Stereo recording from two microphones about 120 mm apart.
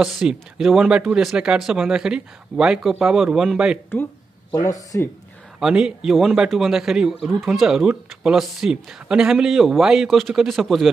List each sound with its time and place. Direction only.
0.0 s a man's voice: 5° right (ahead or behind)
3.9 s a sound: 15° left (ahead or behind)
4.6 s speech: 30° left (ahead or behind)
5.6 s a man's voice: 5° right (ahead or behind)